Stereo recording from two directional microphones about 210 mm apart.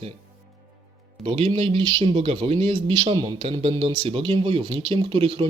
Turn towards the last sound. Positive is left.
turn(degrees=-25)  # may be behind; listen again after turning